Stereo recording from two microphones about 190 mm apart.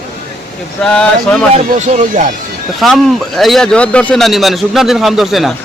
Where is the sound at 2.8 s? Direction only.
Centre (ahead or behind).